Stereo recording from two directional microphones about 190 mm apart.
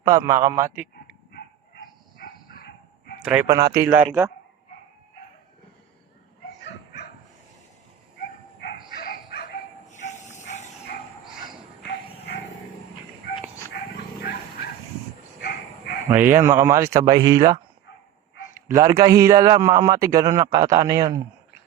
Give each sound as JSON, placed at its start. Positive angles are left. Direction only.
{"t": 0.0, "sound": "a man's voice", "side_deg": -20}
{"t": 1.3, "sound": "dog", "side_deg": 55}
{"t": 3.4, "sound": "speech", "side_deg": -20}
{"t": 8.9, "sound": "bow-wow", "side_deg": 50}
{"t": 9.9, "sound": "hiss", "side_deg": 40}
{"t": 11.8, "sound": "bow-wow", "side_deg": 60}
{"t": 13.9, "sound": "dog", "side_deg": 55}
{"t": 15.4, "sound": "bow-wow", "side_deg": 55}
{"t": 16.0, "sound": "a man's voice", "side_deg": -10}